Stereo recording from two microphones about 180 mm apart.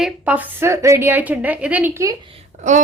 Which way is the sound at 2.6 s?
45° right (ahead or behind).